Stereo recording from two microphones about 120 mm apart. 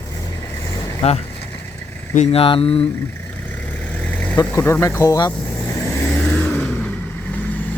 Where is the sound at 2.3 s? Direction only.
50° left (ahead or behind).